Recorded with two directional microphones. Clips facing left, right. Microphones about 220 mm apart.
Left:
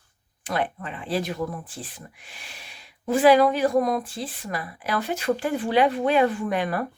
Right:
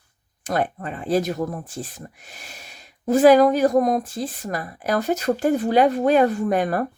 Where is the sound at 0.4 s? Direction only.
45° right (ahead or behind).